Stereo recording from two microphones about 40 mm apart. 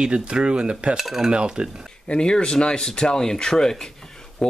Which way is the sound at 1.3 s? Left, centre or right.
Right.